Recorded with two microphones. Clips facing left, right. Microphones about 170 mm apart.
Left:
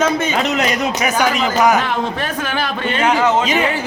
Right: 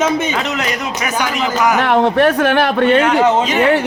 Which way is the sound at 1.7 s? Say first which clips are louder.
Right 7 dB; 65° right (ahead or behind).